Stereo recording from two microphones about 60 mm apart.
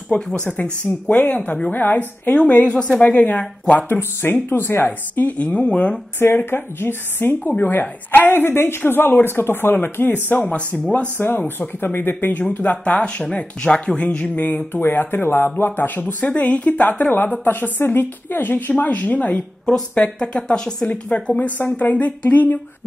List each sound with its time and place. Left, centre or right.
0.1 s a woman's voice: centre
4.2 s speech: left
5.5 s a woman's voice: centre
6.1 s speech: left
11.1 s speech: left
19.3 s a woman's voice: centre; by 22.6 s left